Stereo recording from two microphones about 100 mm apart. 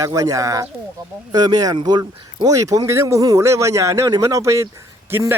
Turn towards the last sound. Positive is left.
turn(degrees=-25)  # may be behind; listen again after turning